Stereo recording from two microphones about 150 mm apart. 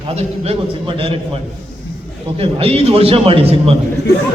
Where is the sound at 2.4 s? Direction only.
40° right (ahead or behind).